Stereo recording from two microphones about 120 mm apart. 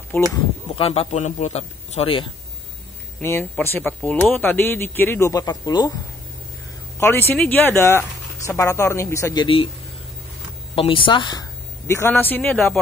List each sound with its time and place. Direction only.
0.1 s speech: 20° left (ahead or behind)
0.7 s a man's voice: 55° left (ahead or behind)
3.2 s speech: 20° left (ahead or behind)
5.3 s speech: 30° left (ahead or behind)
7.0 s speech: 20° left (ahead or behind)
9.3 s speech: 45° left (ahead or behind)
10.7 s speech: 50° left (ahead or behind)
11.9 s speech: 20° left (ahead or behind)